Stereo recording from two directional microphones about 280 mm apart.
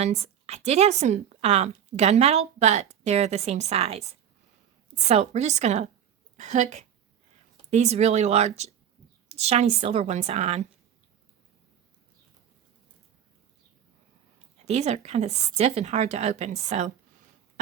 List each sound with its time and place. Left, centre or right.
0.0 s a woman's voice: right
14.6 s a woman's voice: right